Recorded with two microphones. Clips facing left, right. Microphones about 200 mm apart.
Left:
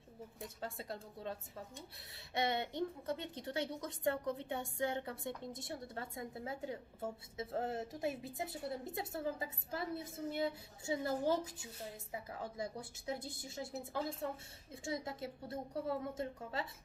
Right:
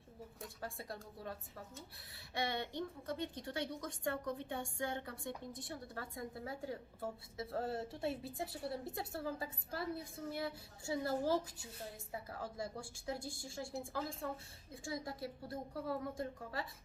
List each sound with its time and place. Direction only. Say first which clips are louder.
0.4 s a woman's voice: left 2 dB; 25° left (ahead or behind)